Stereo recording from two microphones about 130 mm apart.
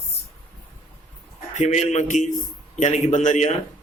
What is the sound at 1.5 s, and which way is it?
Speech, 65° left (ahead or behind).